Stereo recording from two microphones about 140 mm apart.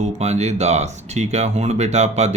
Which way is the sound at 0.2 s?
50° right (ahead or behind).